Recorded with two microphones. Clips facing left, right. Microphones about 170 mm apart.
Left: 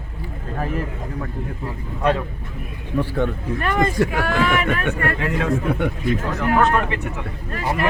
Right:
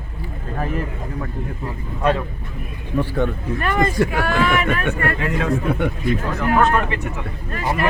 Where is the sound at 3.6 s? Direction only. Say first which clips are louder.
Right 1 dB; 25° left (ahead or behind).